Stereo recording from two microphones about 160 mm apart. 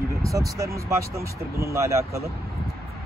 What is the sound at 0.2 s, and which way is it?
Speech, 20° right (ahead or behind).